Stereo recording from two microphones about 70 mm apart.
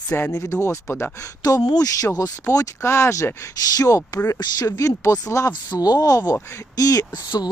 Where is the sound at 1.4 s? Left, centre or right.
Left.